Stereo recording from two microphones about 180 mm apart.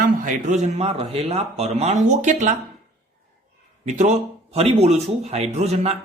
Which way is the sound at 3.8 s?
45° right (ahead or behind).